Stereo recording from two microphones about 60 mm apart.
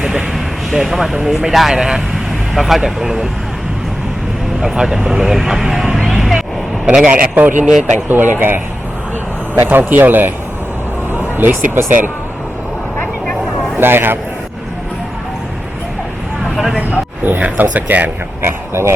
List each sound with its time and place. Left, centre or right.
0.0 s speech: centre
4.6 s speech: centre
6.8 s a man's voice: centre
7.3 s speech: right
9.6 s speech: right
11.3 s speech: right
13.7 s a man's voice: right
17.2 s speech: right
18.4 s speech: right